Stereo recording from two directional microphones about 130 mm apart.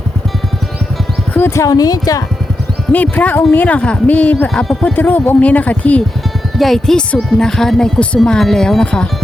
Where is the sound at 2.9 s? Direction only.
10° left (ahead or behind).